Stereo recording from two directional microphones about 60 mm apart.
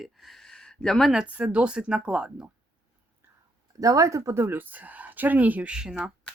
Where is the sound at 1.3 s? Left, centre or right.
Right.